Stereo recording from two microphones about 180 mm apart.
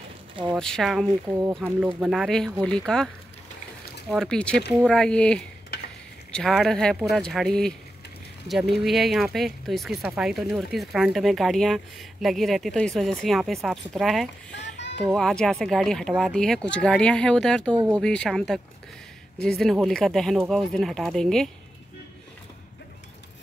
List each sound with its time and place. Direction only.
0.6 s speech: 5° left (ahead or behind)
1.2 s speech: 15° right (ahead or behind); by 3.1 s 5° left (ahead or behind)
4.1 s speech: 5° left (ahead or behind)
5.7 s stir: 70° left (ahead or behind)
6.3 s speech: centre (ahead or behind)